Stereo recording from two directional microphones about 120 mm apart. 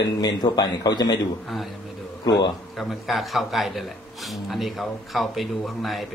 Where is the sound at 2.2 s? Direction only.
35° left (ahead or behind).